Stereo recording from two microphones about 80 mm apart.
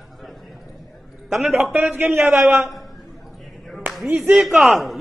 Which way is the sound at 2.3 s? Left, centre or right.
Centre.